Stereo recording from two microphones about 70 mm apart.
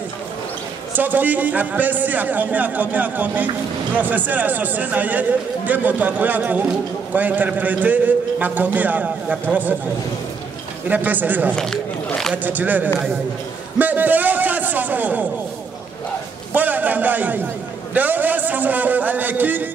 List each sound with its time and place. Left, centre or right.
0.9 s a man's voice: right
10.9 s a man's voice: right
11.5 s speech: centre
12.4 s a man's voice: right
13.7 s a sound: right
16.5 s a sound: right
17.9 s a man's voice: right